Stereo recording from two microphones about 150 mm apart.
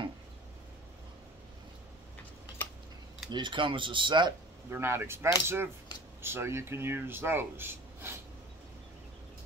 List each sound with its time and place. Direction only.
3.3 s speech: 30° right (ahead or behind)
4.6 s speech: 15° right (ahead or behind)